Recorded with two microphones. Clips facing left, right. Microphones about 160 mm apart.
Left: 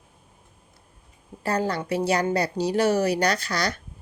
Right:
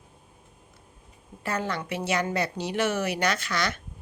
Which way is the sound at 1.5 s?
35° left (ahead or behind).